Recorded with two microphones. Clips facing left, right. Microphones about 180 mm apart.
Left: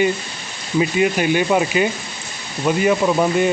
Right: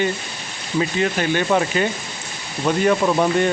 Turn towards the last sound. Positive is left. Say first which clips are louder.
# left 1 dB
turn(degrees=5)  # may be behind; listen again after turning